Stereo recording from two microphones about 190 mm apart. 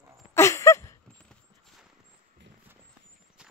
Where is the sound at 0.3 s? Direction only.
15° left (ahead or behind).